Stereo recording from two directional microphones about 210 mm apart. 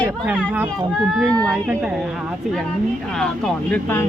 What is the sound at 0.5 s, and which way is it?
A child's voice, 10° right (ahead or behind).